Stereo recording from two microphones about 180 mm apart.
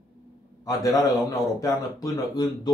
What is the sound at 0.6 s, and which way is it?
Speech, 20° left (ahead or behind).